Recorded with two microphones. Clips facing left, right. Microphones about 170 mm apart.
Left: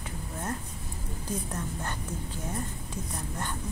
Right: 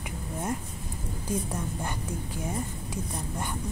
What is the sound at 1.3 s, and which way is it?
A woman's voice, 10° right (ahead or behind).